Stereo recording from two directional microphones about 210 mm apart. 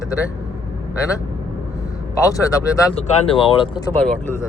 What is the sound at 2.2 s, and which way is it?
Speech, 15° left (ahead or behind).